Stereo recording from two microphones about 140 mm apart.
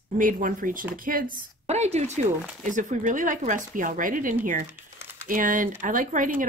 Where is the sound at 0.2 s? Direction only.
75° right (ahead or behind).